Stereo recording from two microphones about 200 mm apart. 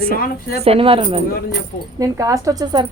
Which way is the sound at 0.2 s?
50° left (ahead or behind).